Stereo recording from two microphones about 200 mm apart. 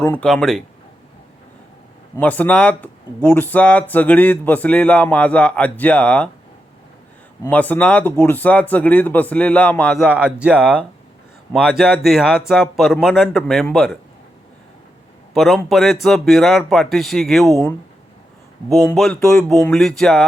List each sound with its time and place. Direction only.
0.0 s speech: 10° left (ahead or behind)
2.1 s speech: 10° left (ahead or behind)
7.4 s speech: 10° left (ahead or behind)
15.3 s speech: centre (ahead or behind)
18.9 s speech: centre (ahead or behind)